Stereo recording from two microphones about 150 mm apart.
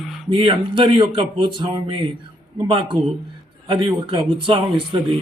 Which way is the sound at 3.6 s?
30° right (ahead or behind).